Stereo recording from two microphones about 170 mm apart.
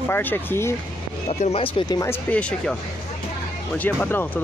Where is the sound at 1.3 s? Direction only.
40° left (ahead or behind); by 2.1 s 20° left (ahead or behind).